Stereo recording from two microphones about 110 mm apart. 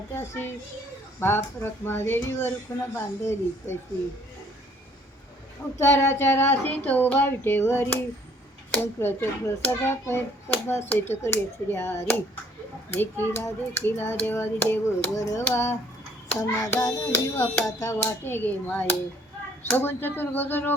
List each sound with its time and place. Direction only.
0.2 s speech: 20° left (ahead or behind)
5.8 s speech: 25° left (ahead or behind)
15.1 s speech: 30° left (ahead or behind)
16.8 s music: 30° left (ahead or behind)
17.7 s speech: 30° left (ahead or behind)